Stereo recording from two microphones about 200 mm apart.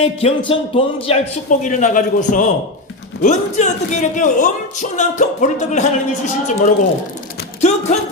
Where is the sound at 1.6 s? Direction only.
40° left (ahead or behind).